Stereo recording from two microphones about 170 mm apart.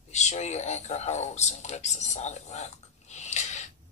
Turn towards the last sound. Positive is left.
turn(degrees=45)  # may be behind; listen again after turning